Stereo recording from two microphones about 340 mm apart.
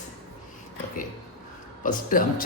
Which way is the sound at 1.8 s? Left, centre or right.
Left.